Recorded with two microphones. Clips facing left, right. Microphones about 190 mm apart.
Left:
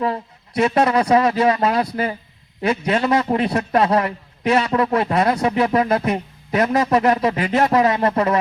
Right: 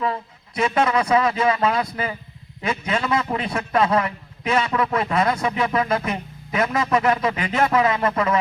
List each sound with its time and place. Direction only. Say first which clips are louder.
0.6 s a man's voice: left 3 dB; 35° left (ahead or behind)